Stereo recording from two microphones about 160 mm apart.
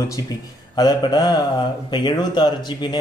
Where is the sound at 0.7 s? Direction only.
25° left (ahead or behind).